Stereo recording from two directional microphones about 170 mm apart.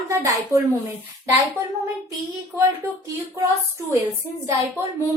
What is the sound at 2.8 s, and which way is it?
Speech, 15° right (ahead or behind).